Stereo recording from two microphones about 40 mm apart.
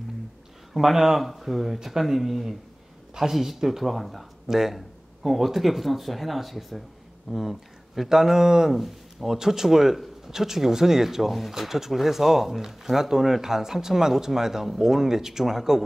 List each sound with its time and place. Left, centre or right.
0.7 s speech: centre
5.2 s speech: centre